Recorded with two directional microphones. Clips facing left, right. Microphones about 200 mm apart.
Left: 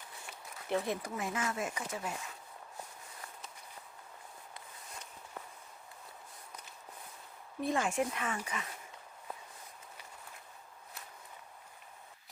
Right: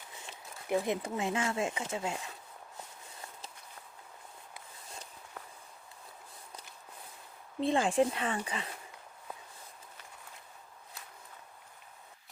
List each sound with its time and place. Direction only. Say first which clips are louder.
0.7 s speech: right 3 dB; 10° right (ahead or behind)
1.0 s speech: right 4 dB; 25° right (ahead or behind)
7.6 s speech: right 5 dB; 30° right (ahead or behind)